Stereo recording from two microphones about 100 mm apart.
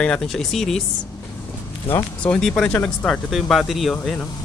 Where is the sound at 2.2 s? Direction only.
10° left (ahead or behind).